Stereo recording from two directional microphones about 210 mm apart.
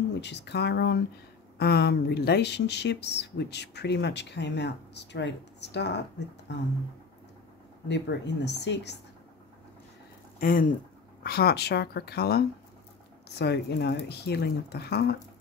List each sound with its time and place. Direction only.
0.1 s speech: 55° left (ahead or behind)
7.9 s speech: 55° left (ahead or behind)
10.4 s speech: 40° left (ahead or behind)